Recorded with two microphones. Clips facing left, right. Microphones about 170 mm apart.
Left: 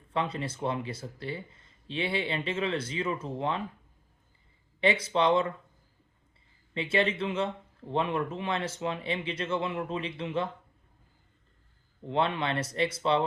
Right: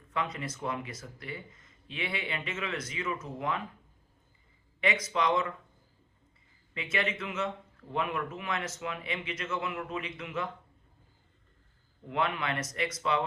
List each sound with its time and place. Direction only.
0.1 s speech: 30° left (ahead or behind)
4.8 s speech: 30° left (ahead or behind)
6.7 s speech: 30° left (ahead or behind)
12.0 s speech: 30° left (ahead or behind)